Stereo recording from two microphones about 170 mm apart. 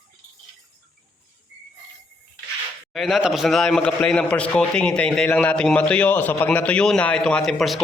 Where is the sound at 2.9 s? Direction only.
Centre (ahead or behind).